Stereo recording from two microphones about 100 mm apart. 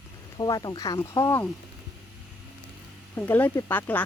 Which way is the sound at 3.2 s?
20° left (ahead or behind).